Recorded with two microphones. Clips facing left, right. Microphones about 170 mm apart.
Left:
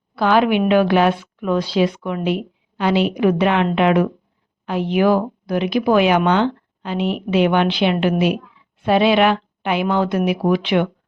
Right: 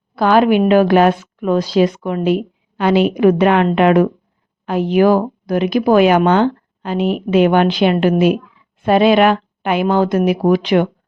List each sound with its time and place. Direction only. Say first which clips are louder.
0.2 s a woman's voice: right 4 dB; 45° right (ahead or behind)